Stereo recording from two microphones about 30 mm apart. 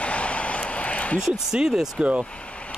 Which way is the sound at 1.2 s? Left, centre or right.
Centre.